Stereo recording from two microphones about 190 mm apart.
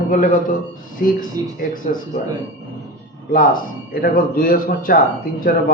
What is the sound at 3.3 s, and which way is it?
Speech, 45° left (ahead or behind).